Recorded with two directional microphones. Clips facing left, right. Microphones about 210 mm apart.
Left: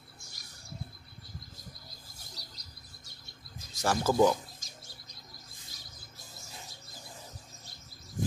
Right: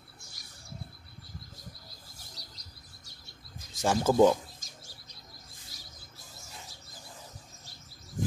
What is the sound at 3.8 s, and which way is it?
Speech, 20° right (ahead or behind).